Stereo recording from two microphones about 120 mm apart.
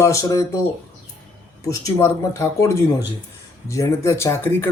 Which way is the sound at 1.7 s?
25° left (ahead or behind).